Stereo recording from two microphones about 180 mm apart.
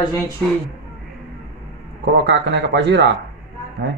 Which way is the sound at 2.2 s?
70° right (ahead or behind).